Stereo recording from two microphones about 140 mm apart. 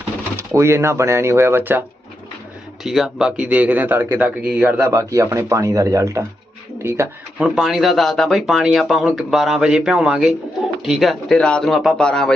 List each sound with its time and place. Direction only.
0.3 s speech: 20° right (ahead or behind)
2.8 s speech: 5° right (ahead or behind)
7.4 s speech: 5° right (ahead or behind)